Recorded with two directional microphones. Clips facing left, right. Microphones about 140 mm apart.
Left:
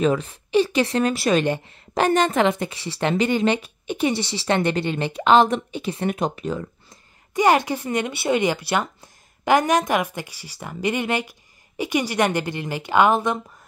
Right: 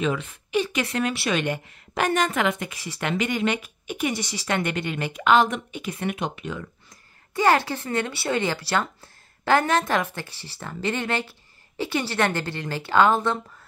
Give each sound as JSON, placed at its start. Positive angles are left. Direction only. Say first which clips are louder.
{"t": 0.0, "sound": "a woman's voice", "louder": "left 5 dB", "side_deg": 35}
{"t": 7.3, "sound": "speech", "louder": "left 2 dB", "side_deg": 15}